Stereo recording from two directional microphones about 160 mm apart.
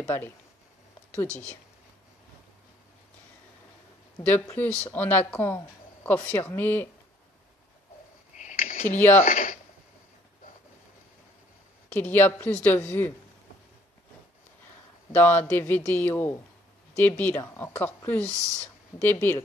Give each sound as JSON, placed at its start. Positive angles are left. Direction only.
{"t": 0.0, "sound": "speech", "side_deg": 15}
{"t": 4.2, "sound": "speech", "side_deg": 10}
{"t": 8.4, "sound": "a sound", "side_deg": 50}
{"t": 9.2, "sound": "speech", "side_deg": 55}
{"t": 11.9, "sound": "speech", "side_deg": 10}
{"t": 15.1, "sound": "speech", "side_deg": 10}